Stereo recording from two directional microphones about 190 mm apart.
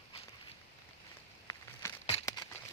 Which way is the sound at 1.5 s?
15° left (ahead or behind).